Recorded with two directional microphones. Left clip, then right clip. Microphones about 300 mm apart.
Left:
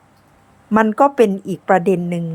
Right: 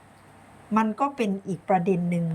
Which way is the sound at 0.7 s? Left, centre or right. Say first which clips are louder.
Left 11 dB; centre.